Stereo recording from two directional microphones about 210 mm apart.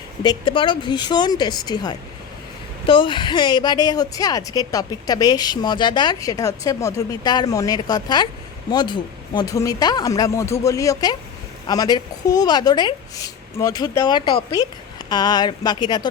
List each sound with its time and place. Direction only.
0.2 s a woman's voice: 20° left (ahead or behind)